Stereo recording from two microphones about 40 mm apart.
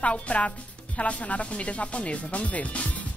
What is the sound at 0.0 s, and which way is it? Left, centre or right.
Speech, left.